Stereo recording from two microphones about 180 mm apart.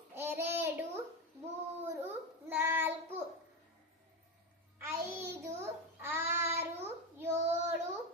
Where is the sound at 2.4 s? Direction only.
10° right (ahead or behind).